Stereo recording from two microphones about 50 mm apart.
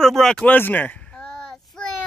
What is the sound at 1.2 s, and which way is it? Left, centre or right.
Child singing, centre.